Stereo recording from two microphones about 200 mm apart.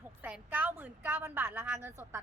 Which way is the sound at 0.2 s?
10° right (ahead or behind).